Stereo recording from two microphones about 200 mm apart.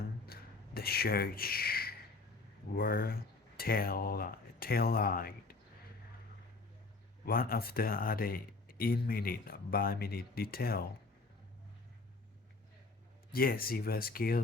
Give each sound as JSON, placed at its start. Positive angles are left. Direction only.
{"t": 0.3, "sound": "a sound", "side_deg": 50}
{"t": 2.7, "sound": "speech", "side_deg": 50}
{"t": 7.3, "sound": "speech", "side_deg": 45}
{"t": 13.3, "sound": "speech", "side_deg": 45}